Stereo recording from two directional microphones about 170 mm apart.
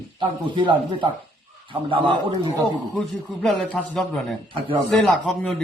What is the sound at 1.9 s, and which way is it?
Speech, 30° right (ahead or behind).